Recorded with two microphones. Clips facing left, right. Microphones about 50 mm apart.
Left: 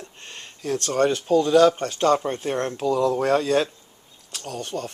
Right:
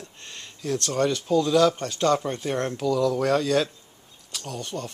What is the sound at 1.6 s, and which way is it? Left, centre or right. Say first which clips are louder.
Speech: left 3 dB; left.